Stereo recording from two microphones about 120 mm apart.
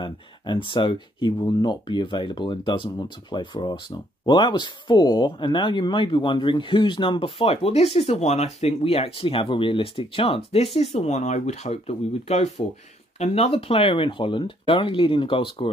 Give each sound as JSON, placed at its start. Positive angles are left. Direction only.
{"t": 0.0, "sound": "speech", "side_deg": 40}